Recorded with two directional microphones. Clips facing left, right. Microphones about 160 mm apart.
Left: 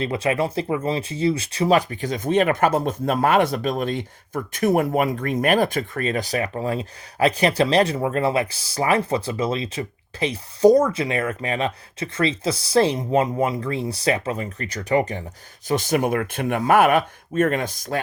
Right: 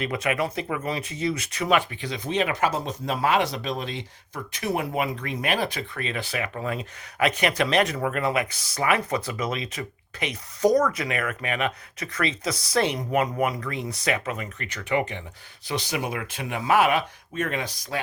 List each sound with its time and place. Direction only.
0.0 s speech: 30° left (ahead or behind); by 18.0 s 50° left (ahead or behind)